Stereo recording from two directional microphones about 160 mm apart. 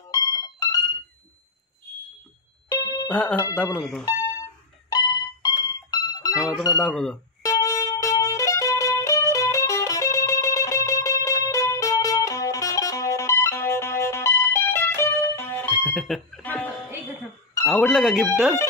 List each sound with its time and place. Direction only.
0.1 s music: 20° left (ahead or behind)
2.7 s music: 25° left (ahead or behind)
3.1 s speech: 5° left (ahead or behind)
4.8 s music: 25° left (ahead or behind)
6.3 s speech: 5° right (ahead or behind)
7.4 s music: 20° left (ahead or behind)
15.7 s a sound: centre (ahead or behind)
17.6 s speech: centre (ahead or behind)